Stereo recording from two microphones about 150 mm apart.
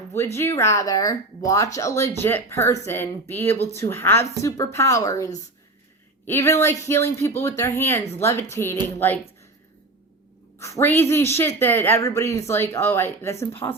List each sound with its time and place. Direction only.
0.3 s speech: 15° left (ahead or behind)
10.6 s speech: 20° left (ahead or behind)